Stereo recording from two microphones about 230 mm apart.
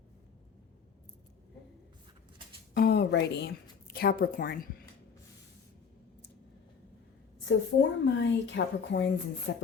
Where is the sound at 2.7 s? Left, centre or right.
Left.